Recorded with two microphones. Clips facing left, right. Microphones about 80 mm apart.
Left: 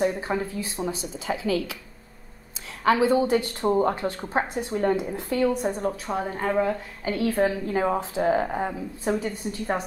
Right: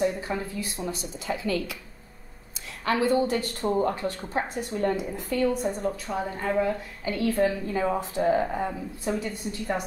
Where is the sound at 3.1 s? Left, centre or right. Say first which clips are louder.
Left 3 dB; left.